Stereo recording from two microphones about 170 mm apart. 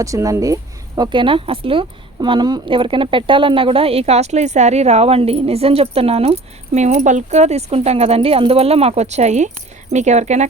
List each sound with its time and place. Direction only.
0.0 s speech: 20° right (ahead or behind); by 10.4 s 40° right (ahead or behind)